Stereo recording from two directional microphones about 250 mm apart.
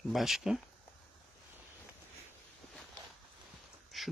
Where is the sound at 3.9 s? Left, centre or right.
Centre.